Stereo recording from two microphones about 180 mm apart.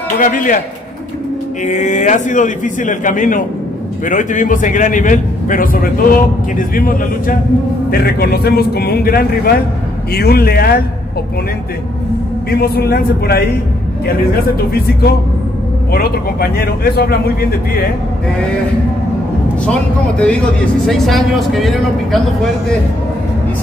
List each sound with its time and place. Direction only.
0.2 s a man's voice: 45° left (ahead or behind)
1.7 s a man's voice: 45° left (ahead or behind)
12.4 s speech: 60° left (ahead or behind)
20.2 s speech: 5° left (ahead or behind)